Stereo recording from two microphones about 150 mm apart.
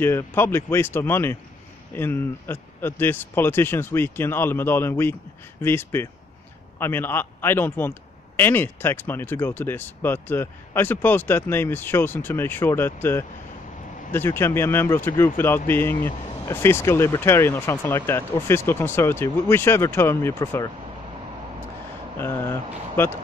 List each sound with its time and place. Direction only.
0.0 s speech: 15° left (ahead or behind)
22.2 s speech: 15° left (ahead or behind)